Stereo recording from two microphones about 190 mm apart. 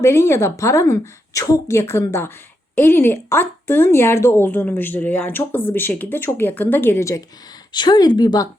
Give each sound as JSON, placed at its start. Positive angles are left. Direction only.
{"t": 0.0, "sound": "speech", "side_deg": 15}